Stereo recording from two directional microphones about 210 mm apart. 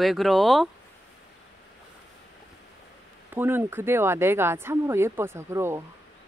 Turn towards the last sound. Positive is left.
turn(degrees=-10)  # may be behind; listen again after turning